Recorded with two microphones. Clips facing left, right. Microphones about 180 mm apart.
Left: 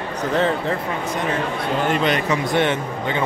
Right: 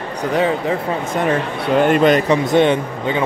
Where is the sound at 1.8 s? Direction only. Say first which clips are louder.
Right 7 dB; 45° right (ahead or behind).